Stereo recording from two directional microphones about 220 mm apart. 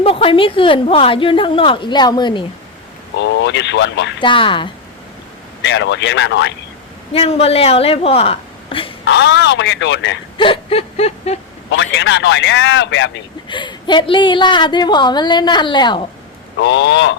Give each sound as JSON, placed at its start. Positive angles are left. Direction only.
{"t": 0.0, "sound": "a woman's voice", "side_deg": 25}
{"t": 3.2, "sound": "a man's voice", "side_deg": 55}
{"t": 4.2, "sound": "a woman's voice", "side_deg": 20}
{"t": 5.6, "sound": "speech", "side_deg": 55}
{"t": 7.1, "sound": "a woman's voice", "side_deg": 25}
{"t": 9.0, "sound": "a man's voice", "side_deg": 55}
{"t": 10.3, "sound": "a sound", "side_deg": 25}
{"t": 11.7, "sound": "a man's voice", "side_deg": 55}
{"t": 13.5, "sound": "a woman's voice", "side_deg": 20}
{"t": 16.6, "sound": "speech", "side_deg": 55}